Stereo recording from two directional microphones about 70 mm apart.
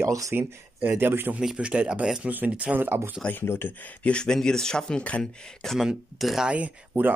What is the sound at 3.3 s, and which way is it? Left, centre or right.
Speech, left.